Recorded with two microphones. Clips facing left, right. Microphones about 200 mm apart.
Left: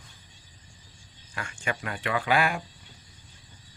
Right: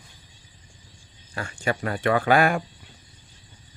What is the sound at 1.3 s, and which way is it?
Speech, 35° right (ahead or behind).